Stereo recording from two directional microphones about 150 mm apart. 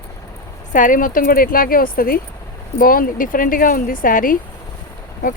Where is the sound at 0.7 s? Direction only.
60° left (ahead or behind).